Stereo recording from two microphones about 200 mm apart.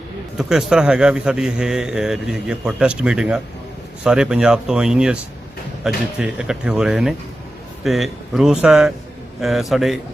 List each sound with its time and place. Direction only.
0.3 s a man's voice: centre (ahead or behind)